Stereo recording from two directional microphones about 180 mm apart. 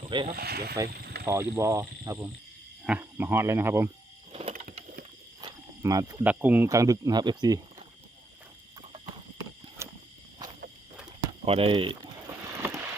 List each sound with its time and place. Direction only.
0.0 s a sound: 25° right (ahead or behind)
0.3 s speech: 60° right (ahead or behind)
0.9 s a sound: 60° right (ahead or behind)
1.2 s speech: 15° right (ahead or behind)
4.3 s vehicle: 35° right (ahead or behind)
5.4 s cricket: 20° right (ahead or behind)
6.2 s speech: 10° right (ahead or behind)
9.8 s a sound: 15° right (ahead or behind)
11.4 s speech: 30° right (ahead or behind)
12.5 s vehicle: 15° right (ahead or behind)